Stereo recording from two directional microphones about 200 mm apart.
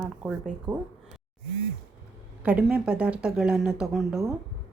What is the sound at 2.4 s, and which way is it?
Speech, 5° right (ahead or behind).